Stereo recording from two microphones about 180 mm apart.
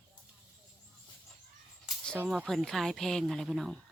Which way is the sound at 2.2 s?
5° right (ahead or behind).